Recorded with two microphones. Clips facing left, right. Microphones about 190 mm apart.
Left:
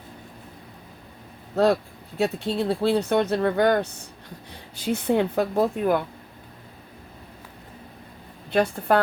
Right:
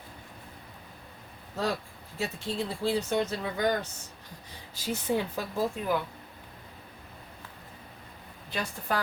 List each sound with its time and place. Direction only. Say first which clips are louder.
1.6 s speech: left 11 dB; 65° left (ahead or behind)
8.4 s speech: left 12 dB; 60° left (ahead or behind)